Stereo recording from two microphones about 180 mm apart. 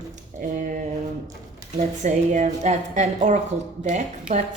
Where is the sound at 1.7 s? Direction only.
40° right (ahead or behind).